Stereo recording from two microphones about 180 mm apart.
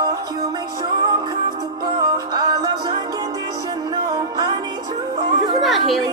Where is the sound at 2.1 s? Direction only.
20° right (ahead or behind).